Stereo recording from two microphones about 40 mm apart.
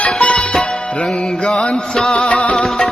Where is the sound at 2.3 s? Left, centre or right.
Left.